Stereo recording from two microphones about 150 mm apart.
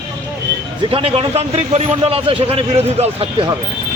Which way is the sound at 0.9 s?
40° right (ahead or behind).